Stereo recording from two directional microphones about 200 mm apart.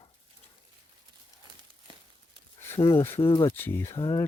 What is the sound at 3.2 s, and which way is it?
Speech, 25° left (ahead or behind).